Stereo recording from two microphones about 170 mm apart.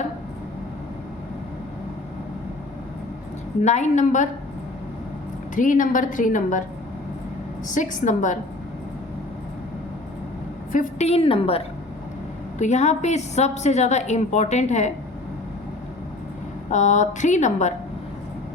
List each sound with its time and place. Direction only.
3.6 s a woman's voice: 45° left (ahead or behind)
5.5 s a woman's voice: 50° left (ahead or behind)
7.7 s a woman's voice: 50° left (ahead or behind)
10.7 s a woman's voice: 45° left (ahead or behind)
12.5 s a woman's voice: 45° left (ahead or behind)
16.7 s a woman's voice: 45° left (ahead or behind)